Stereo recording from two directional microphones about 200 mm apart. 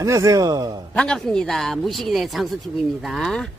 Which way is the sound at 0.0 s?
15° right (ahead or behind).